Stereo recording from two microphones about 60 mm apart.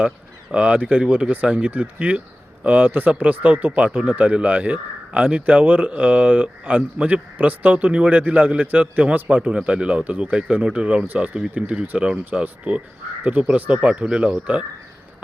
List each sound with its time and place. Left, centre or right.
0.5 s speech: centre